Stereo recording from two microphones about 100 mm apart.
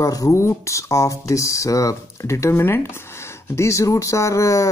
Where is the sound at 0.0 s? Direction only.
35° left (ahead or behind).